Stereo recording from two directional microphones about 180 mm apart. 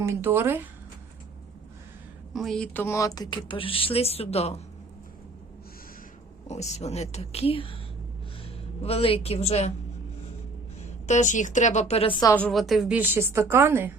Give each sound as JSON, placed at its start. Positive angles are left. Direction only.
{"t": 0.0, "sound": "a woman's voice", "side_deg": -15}
{"t": 2.3, "sound": "speech", "side_deg": 0}
{"t": 6.5, "sound": "speech", "side_deg": 40}
{"t": 8.8, "sound": "speech", "side_deg": 35}
{"t": 11.0, "sound": "speech", "side_deg": 40}
{"t": 12.2, "sound": "a woman's voice", "side_deg": 10}